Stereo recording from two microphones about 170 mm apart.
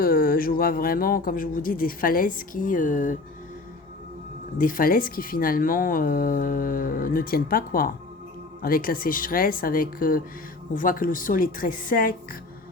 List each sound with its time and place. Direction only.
0.0 s speech: 60° left (ahead or behind)
4.5 s speech: 55° left (ahead or behind)